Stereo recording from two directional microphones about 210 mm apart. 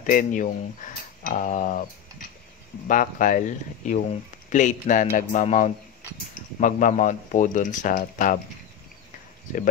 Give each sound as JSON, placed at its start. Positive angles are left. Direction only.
{"t": 0.0, "sound": "speech", "side_deg": 40}